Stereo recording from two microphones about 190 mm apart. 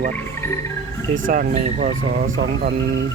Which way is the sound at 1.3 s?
40° right (ahead or behind).